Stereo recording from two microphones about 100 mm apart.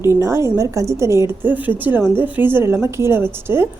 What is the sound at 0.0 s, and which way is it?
A woman's voice, 30° right (ahead or behind).